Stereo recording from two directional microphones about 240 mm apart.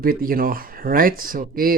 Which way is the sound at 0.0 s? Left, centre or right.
Right.